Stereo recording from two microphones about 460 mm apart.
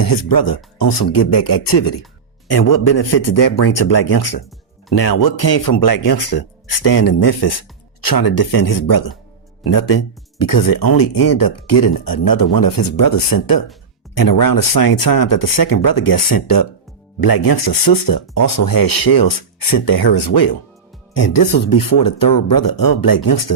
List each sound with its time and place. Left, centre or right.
0.0 s speech: left
10.3 s speech: left